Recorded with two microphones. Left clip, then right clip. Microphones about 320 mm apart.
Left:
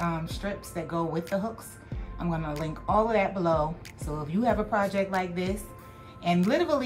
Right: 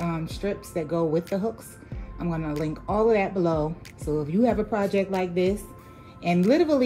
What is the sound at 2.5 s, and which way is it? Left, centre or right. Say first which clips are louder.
Speech: left 2 dB; centre.